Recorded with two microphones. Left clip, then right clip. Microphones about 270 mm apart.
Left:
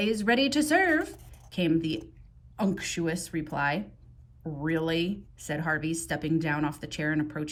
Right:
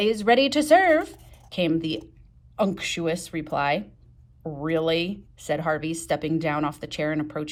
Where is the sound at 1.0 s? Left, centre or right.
Centre.